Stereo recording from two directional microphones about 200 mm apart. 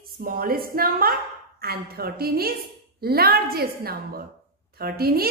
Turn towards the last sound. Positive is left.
turn(degrees=-50)  # may be behind; listen again after turning